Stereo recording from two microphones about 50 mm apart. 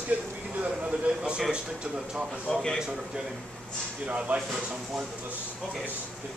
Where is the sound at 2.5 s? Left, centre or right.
Centre.